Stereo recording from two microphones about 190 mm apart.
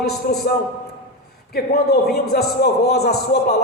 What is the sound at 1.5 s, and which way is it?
A man's voice, 55° left (ahead or behind).